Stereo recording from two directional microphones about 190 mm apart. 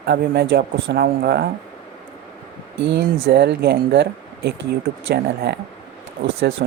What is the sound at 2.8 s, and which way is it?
Speech, 60° right (ahead or behind).